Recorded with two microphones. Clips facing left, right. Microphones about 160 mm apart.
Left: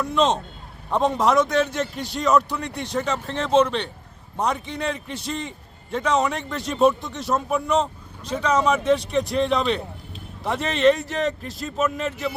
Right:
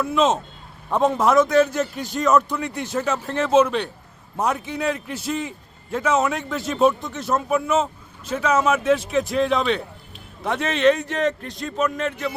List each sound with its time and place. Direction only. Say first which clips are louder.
0.0 s a man's voice: right 1 dB; 5° right (ahead or behind)